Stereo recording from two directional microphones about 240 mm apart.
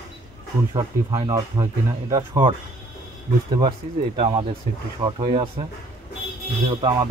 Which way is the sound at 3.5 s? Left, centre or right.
Right.